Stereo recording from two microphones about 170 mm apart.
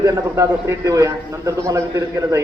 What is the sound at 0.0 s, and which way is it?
A man's voice, 15° right (ahead or behind).